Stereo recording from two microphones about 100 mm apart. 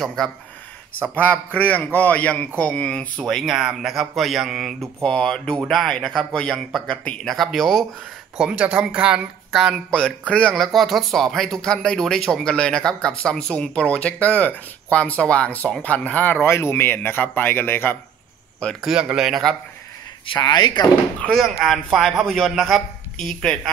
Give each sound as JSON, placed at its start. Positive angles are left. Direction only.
{"t": 0.0, "sound": "speech", "side_deg": 5}
{"t": 1.1, "sound": "speech", "side_deg": 15}
{"t": 5.0, "sound": "speech", "side_deg": 10}
{"t": 8.4, "sound": "speech", "side_deg": -10}
{"t": 9.8, "sound": "speech", "side_deg": 10}
{"t": 18.8, "sound": "speech", "side_deg": -5}
{"t": 20.3, "sound": "speech", "side_deg": 45}
{"t": 21.2, "sound": "speech", "side_deg": 5}